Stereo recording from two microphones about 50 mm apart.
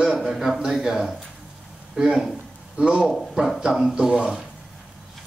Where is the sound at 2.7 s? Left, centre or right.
Centre.